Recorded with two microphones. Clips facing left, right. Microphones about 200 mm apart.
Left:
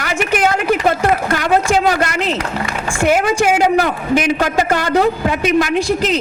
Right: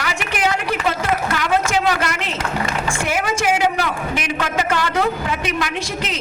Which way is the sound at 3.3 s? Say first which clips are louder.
Left 5 dB; 40° left (ahead or behind).